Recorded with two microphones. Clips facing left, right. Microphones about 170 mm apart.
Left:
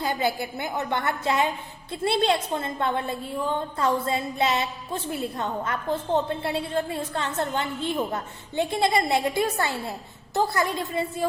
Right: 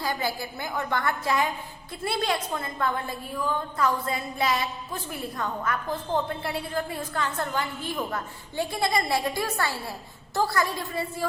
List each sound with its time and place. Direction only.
0.0 s a woman's voice: 20° left (ahead or behind)